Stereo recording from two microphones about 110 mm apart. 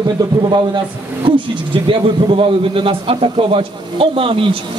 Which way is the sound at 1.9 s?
55° right (ahead or behind).